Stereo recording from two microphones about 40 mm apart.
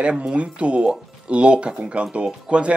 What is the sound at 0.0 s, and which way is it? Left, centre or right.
Speech, right.